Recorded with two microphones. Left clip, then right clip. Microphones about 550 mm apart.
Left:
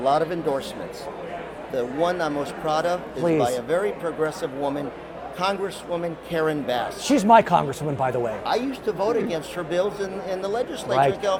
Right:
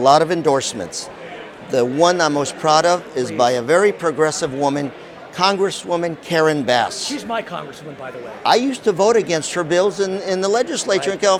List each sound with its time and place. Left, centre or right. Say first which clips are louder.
0.0 s speech: right 8 dB; right
1.7 s speech: right 9 dB; right
7.1 s speech: left 9 dB; left
8.4 s a man's voice: right 9 dB; right